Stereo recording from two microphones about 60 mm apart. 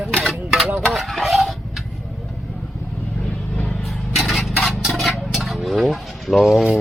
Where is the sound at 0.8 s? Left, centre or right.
Centre.